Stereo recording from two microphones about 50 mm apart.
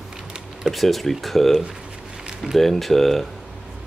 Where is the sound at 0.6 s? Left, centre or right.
Centre.